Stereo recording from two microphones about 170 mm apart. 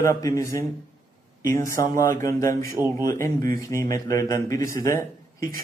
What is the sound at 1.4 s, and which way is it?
A man's voice, 20° left (ahead or behind).